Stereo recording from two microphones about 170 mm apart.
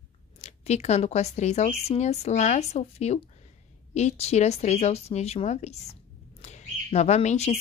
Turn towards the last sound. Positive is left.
turn(degrees=40)  # may be behind; listen again after turning